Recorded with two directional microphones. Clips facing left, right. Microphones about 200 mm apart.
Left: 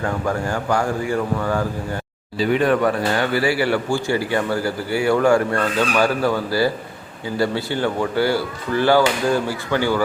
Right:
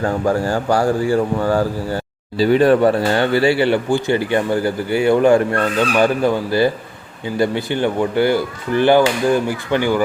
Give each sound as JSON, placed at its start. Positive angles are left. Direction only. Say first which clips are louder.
{"t": 0.0, "sound": "speech", "louder": "right 5 dB", "side_deg": -30}